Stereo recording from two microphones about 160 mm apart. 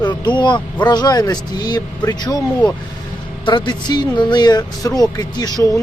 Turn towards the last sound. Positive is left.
turn(degrees=20)  # may be behind; listen again after turning